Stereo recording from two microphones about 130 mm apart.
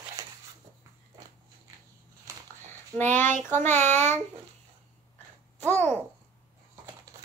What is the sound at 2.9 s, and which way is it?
Speech, 15° left (ahead or behind).